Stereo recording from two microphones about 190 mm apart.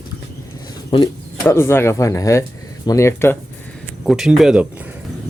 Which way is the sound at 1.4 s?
10° left (ahead or behind).